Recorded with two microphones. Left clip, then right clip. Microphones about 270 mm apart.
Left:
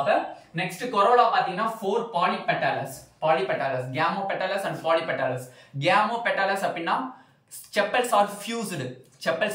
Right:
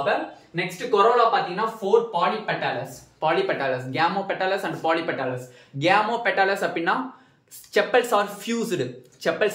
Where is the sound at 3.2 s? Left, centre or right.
Centre.